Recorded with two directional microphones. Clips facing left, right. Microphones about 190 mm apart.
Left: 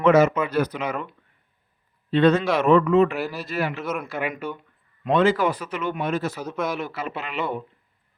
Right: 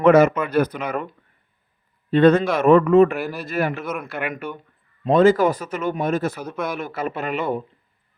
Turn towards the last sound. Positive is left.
turn(degrees=-50)  # may be behind; listen again after turning